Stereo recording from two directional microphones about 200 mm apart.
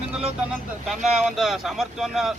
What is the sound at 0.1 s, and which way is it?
Speech, 5° right (ahead or behind).